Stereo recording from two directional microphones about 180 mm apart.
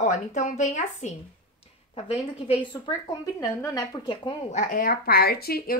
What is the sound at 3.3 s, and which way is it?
A woman's voice, 20° left (ahead or behind).